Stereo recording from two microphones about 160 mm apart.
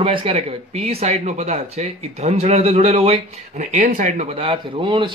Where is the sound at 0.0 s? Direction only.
35° right (ahead or behind).